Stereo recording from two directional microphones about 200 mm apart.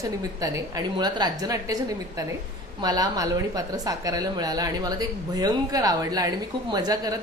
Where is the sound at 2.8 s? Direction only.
20° right (ahead or behind).